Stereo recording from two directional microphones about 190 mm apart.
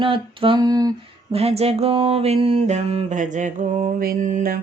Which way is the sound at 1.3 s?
35° right (ahead or behind).